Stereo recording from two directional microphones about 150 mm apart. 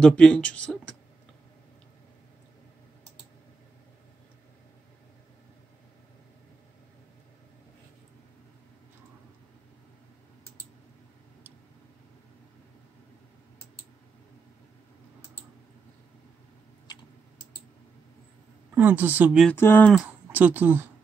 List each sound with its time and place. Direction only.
0.0 s speech: 5° left (ahead or behind)
18.8 s speech: 10° right (ahead or behind)
19.5 s speech: 15° left (ahead or behind)
20.2 s speech: 15° right (ahead or behind)